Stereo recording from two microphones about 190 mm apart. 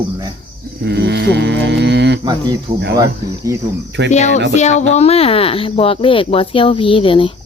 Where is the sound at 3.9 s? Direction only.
65° right (ahead or behind).